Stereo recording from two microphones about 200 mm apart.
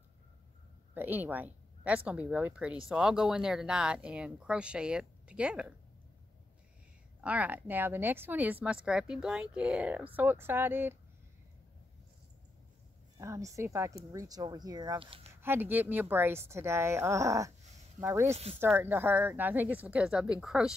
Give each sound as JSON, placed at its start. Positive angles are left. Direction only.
{"t": 0.9, "sound": "speech", "side_deg": -10}
{"t": 7.2, "sound": "a woman's voice", "side_deg": -5}
{"t": 13.2, "sound": "a woman's voice", "side_deg": -15}
{"t": 15.4, "sound": "a woman's voice", "side_deg": -10}
{"t": 18.3, "sound": "speech", "side_deg": -30}
{"t": 18.8, "sound": "a woman's voice", "side_deg": -10}